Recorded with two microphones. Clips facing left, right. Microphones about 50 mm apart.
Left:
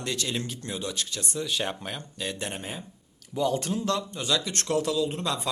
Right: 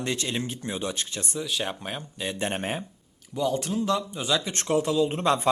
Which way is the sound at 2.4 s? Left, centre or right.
Right.